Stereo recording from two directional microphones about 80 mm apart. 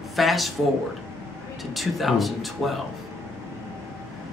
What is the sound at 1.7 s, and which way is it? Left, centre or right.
Speech, centre.